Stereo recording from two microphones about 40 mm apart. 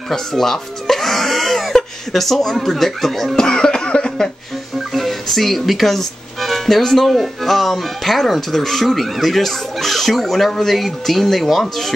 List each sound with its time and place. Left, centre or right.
0.1 s speech: centre
3.3 s cough: centre
4.9 s speech: centre